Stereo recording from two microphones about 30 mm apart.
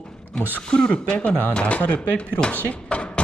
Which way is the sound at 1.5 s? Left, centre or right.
Left.